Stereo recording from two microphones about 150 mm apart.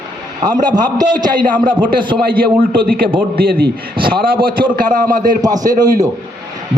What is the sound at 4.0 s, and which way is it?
Speech, 35° right (ahead or behind).